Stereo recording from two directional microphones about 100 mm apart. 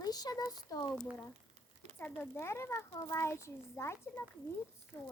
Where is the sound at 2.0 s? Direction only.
20° left (ahead or behind).